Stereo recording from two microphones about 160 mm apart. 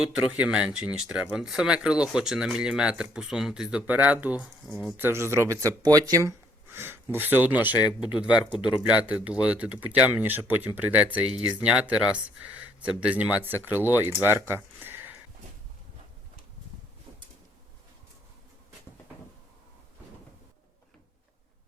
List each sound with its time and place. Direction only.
0.0 s speech: 5° right (ahead or behind)
7.7 s speech: 25° left (ahead or behind)
9.0 s speech: 10° right (ahead or behind)
14.3 s a sound: 15° right (ahead or behind)